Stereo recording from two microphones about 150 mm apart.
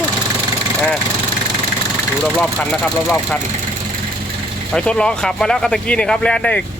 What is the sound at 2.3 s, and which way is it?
Speech, 10° left (ahead or behind).